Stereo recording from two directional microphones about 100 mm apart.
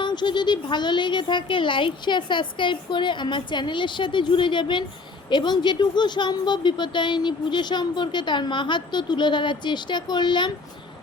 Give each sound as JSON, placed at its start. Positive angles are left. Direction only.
{"t": 0.0, "sound": "a woman's voice", "side_deg": 50}